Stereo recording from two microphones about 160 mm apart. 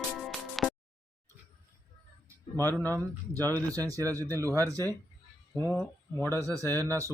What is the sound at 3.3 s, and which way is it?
Speech, 20° right (ahead or behind).